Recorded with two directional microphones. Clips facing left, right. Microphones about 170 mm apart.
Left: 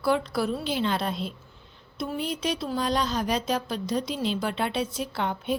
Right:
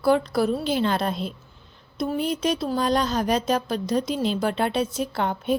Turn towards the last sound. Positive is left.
turn(degrees=-45)  # may be behind; listen again after turning